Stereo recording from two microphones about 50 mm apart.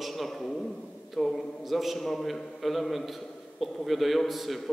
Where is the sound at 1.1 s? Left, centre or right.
Centre.